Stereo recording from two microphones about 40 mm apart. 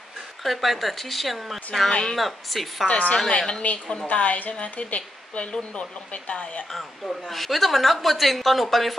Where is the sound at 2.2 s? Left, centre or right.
Centre.